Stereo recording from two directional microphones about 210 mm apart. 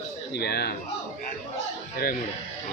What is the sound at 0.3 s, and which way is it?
Speech, 50° left (ahead or behind).